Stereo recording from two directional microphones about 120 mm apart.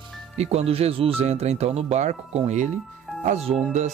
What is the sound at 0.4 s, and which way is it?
Speech, 60° right (ahead or behind).